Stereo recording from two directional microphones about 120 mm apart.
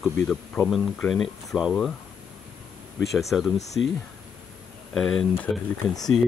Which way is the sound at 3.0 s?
Centre (ahead or behind).